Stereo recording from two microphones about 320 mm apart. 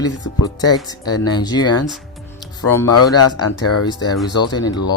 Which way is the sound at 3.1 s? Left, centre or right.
Left.